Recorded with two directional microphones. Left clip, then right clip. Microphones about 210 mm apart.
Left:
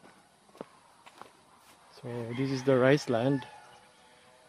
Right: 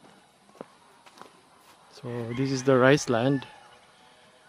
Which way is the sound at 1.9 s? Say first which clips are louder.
Right 4 dB; 20° right (ahead or behind).